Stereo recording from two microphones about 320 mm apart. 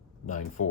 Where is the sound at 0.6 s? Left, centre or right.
Left.